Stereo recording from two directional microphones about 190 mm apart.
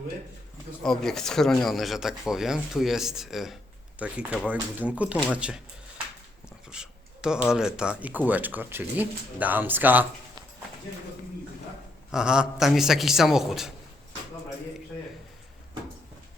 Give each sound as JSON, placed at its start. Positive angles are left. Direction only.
{"t": 0.8, "sound": "speech", "side_deg": 0}
{"t": 6.7, "sound": "a sound", "side_deg": -5}
{"t": 7.5, "sound": "speech", "side_deg": -5}
{"t": 12.1, "sound": "speech", "side_deg": -5}